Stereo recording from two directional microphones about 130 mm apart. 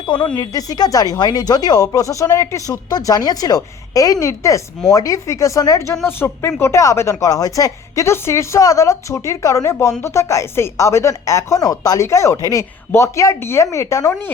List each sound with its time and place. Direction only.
0.0 s a woman's voice: 40° left (ahead or behind)
0.3 s speech: 30° left (ahead or behind)